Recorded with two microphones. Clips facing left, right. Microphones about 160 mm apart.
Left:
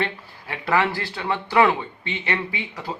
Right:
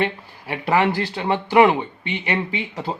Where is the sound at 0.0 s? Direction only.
15° right (ahead or behind).